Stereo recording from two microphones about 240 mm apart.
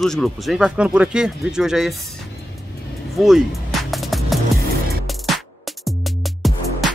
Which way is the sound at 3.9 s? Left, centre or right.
Centre.